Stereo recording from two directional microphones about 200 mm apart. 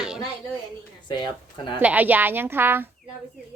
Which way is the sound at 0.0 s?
5° right (ahead or behind).